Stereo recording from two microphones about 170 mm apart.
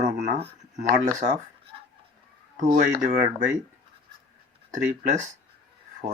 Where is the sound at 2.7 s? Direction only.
55° right (ahead or behind).